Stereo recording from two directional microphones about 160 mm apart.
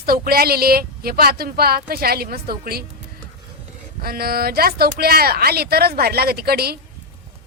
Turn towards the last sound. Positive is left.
turn(degrees=-75)  # may be behind; listen again after turning